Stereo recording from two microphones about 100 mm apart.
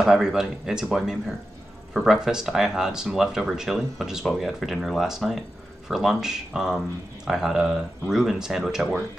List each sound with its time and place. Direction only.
0.0 s speech: 5° right (ahead or behind)